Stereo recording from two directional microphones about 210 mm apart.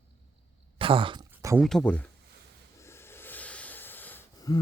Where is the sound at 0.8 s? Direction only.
25° right (ahead or behind).